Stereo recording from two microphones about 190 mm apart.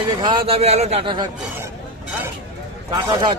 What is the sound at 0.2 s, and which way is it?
A man's voice, 25° right (ahead or behind).